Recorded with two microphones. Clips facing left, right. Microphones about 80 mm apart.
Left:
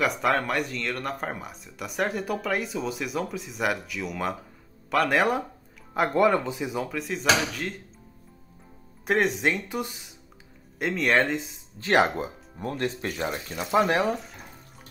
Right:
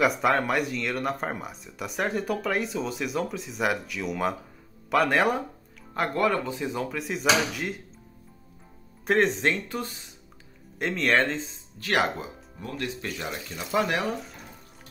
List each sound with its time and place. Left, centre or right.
0.0 s speech: centre
6.1 s speech: centre
9.0 s speech: centre
11.8 s speech: left
12.2 s speech: left
13.6 s speech: left